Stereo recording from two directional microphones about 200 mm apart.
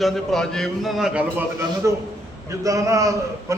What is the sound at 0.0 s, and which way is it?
A man's voice, centre (ahead or behind).